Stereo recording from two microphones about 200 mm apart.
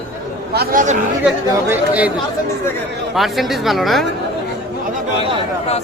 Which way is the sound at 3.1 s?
Centre (ahead or behind).